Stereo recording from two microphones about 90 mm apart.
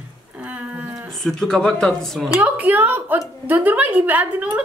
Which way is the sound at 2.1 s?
15° right (ahead or behind).